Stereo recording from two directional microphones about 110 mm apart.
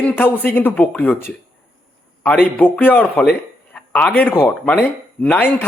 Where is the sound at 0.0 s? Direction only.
15° left (ahead or behind).